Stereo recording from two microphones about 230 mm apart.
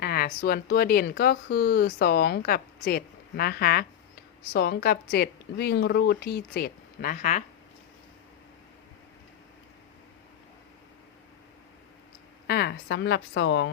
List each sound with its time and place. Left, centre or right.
0.0 s speech: left
12.5 s speech: left